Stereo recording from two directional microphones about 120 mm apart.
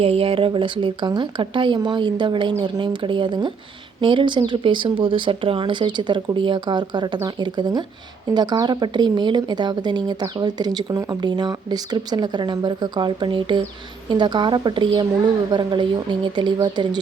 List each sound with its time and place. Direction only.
0.0 s speech: 55° right (ahead or behind); by 17.0 s 35° right (ahead or behind)